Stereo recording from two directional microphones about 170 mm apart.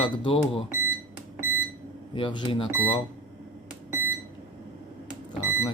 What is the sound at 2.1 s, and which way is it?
Speech, 30° left (ahead or behind).